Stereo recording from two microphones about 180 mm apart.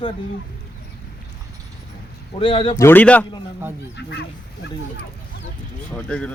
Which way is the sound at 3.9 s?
70° left (ahead or behind).